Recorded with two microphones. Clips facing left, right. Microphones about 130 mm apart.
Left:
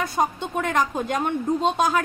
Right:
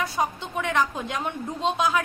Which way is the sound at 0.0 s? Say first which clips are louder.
Left 3 dB; 50° left (ahead or behind).